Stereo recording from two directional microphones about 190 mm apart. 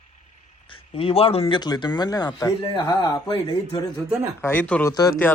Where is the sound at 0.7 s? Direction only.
30° left (ahead or behind).